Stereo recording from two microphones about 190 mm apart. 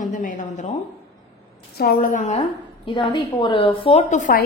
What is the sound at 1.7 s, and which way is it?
A woman's voice, 55° left (ahead or behind).